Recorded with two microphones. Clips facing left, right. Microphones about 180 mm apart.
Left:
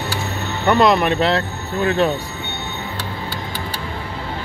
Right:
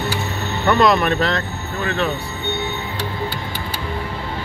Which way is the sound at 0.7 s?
15° left (ahead or behind).